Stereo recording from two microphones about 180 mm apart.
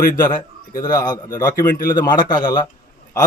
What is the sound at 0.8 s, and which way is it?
Speech, 20° left (ahead or behind).